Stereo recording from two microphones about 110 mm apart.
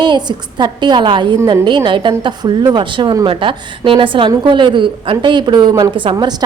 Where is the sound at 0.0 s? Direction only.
45° right (ahead or behind).